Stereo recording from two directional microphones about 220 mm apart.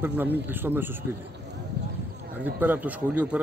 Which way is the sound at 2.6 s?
10° right (ahead or behind).